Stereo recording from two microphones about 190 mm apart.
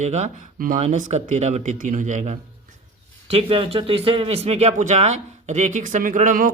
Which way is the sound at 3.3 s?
30° right (ahead or behind).